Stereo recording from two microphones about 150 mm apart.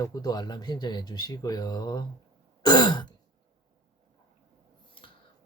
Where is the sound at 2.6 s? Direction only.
30° left (ahead or behind).